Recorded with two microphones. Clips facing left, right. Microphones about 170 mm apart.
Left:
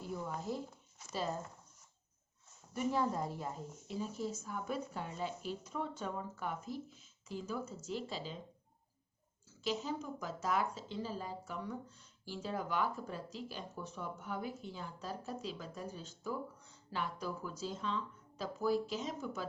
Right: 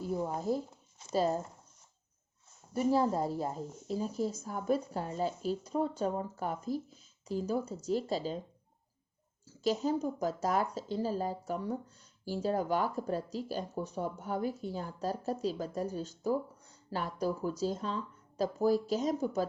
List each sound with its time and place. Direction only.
0.0 s speech: 40° right (ahead or behind)
2.7 s speech: 35° right (ahead or behind)
9.6 s speech: 40° right (ahead or behind)